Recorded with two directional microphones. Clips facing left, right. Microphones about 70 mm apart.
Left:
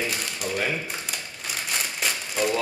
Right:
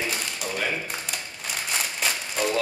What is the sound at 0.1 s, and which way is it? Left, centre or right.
Crumpling, centre.